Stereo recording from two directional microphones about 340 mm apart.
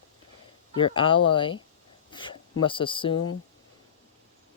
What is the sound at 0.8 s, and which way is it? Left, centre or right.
Speech, centre.